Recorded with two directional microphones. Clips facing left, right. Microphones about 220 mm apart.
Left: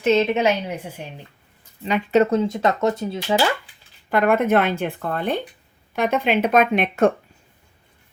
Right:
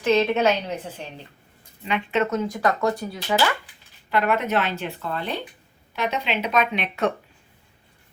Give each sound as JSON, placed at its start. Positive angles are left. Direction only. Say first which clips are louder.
{"t": 0.0, "sound": "a woman's voice", "louder": "left 2 dB", "side_deg": 25}
{"t": 1.8, "sound": "speech", "louder": "left 6 dB", "side_deg": 40}
{"t": 4.1, "sound": "speech", "louder": "left 5 dB", "side_deg": 50}